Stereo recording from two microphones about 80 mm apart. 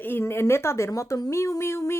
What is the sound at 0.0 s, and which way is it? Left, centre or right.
Speech, left.